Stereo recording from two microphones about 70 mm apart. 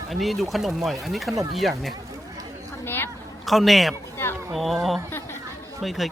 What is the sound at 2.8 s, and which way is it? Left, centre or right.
Speech, left.